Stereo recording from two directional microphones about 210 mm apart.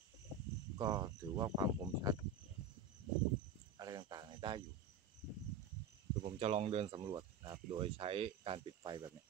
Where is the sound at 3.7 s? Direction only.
20° right (ahead or behind).